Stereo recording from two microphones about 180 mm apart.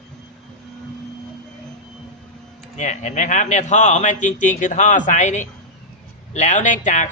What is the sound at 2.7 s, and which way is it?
A man's voice, 40° left (ahead or behind).